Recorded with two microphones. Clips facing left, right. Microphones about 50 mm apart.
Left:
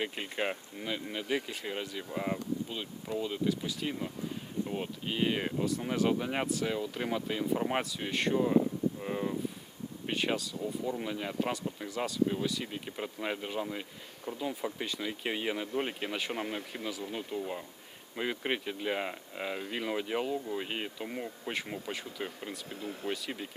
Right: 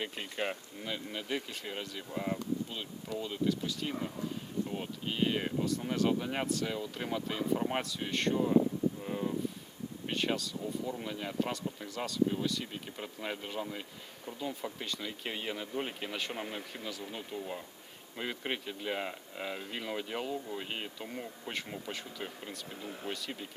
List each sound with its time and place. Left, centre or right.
0.0 s speech: centre
9.0 s speech: left
10.1 s speech: centre